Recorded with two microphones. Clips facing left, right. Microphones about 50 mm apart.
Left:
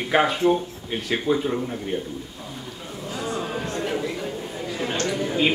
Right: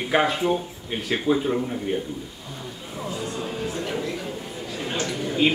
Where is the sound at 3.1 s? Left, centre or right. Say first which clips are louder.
Left 3 dB; left.